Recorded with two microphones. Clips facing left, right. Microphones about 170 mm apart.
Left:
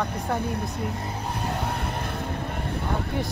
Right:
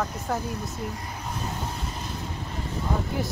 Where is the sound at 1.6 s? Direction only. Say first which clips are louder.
Left 5 dB; 60° left (ahead or behind).